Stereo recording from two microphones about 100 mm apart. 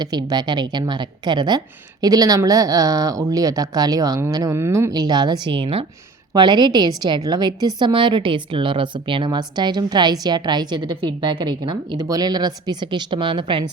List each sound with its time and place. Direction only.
0.0 s a woman's voice: 45° right (ahead or behind); by 5.8 s 60° right (ahead or behind)
6.3 s a woman's voice: 50° right (ahead or behind)
12.0 s a woman's voice: 40° right (ahead or behind); by 13.7 s 55° right (ahead or behind)